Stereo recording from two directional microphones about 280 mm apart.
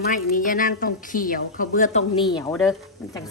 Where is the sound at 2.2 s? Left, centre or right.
Centre.